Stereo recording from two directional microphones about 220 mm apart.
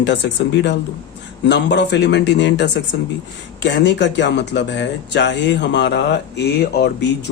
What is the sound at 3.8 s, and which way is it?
Speech, 50° left (ahead or behind).